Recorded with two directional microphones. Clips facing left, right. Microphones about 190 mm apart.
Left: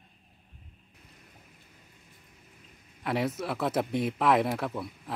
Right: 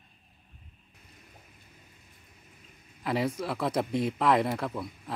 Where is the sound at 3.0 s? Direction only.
Centre (ahead or behind).